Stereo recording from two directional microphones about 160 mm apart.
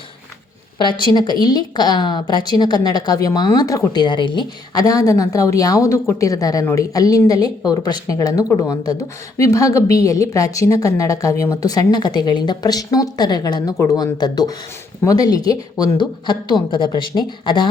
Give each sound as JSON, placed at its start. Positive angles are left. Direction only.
{"t": 0.8, "sound": "a woman's voice", "side_deg": 30}